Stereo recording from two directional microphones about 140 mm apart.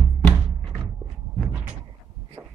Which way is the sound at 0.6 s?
35° right (ahead or behind).